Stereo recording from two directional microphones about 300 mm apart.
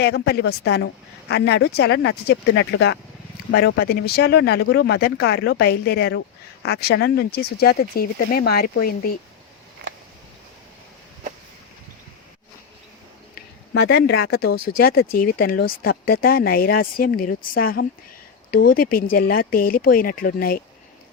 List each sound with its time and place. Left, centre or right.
0.0 s speech: left
13.3 s speech: left